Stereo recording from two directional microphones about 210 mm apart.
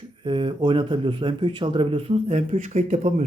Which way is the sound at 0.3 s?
25° right (ahead or behind).